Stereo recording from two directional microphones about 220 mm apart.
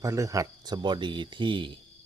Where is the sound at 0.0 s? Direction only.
15° right (ahead or behind).